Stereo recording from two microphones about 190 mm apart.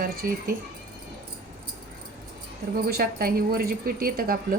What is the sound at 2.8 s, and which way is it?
A woman's voice, 50° right (ahead or behind).